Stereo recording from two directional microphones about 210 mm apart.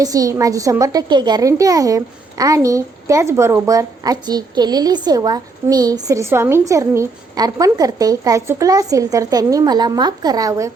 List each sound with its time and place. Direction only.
0.0 s speech: 15° right (ahead or behind)